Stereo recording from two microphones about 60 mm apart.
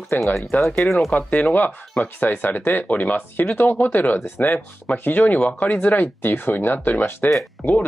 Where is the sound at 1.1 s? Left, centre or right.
Left.